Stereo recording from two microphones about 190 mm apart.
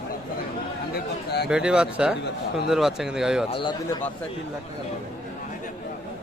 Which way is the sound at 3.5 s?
25° left (ahead or behind).